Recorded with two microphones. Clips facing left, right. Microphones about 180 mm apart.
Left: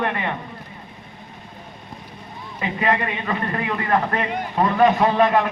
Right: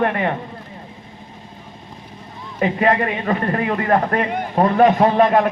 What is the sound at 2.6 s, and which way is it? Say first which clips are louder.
A man's voice: right 5 dB; 40° right (ahead or behind).